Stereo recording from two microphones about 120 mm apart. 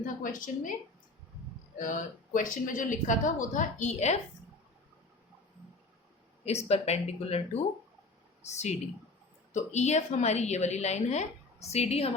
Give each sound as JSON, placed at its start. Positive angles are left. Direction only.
{"t": 0.2, "sound": "a woman's voice", "side_deg": 90}
{"t": 1.8, "sound": "a woman's voice", "side_deg": 90}
{"t": 6.4, "sound": "a woman's voice", "side_deg": 60}